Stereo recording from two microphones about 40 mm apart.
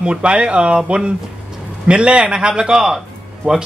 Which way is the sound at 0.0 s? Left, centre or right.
Right.